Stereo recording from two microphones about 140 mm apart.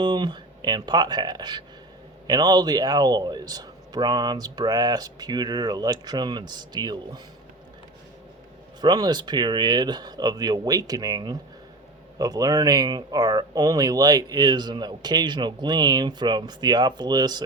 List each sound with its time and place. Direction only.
0.0 s speech: 30° right (ahead or behind)
8.8 s speech: 30° right (ahead or behind)